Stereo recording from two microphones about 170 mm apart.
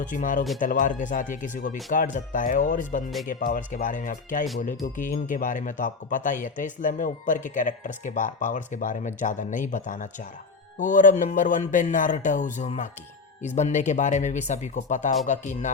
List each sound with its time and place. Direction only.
0.1 s speech: 50° left (ahead or behind)